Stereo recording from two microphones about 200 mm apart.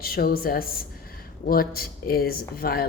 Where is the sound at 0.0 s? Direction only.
45° left (ahead or behind).